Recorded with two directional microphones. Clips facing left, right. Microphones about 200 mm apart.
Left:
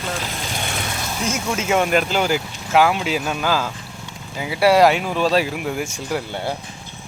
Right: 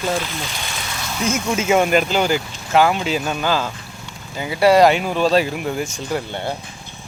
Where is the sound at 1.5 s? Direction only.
5° right (ahead or behind).